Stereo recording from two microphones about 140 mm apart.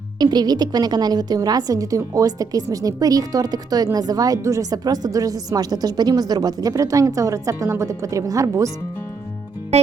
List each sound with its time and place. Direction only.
0.2 s a woman's voice: 30° right (ahead or behind)
9.7 s music: 50° right (ahead or behind)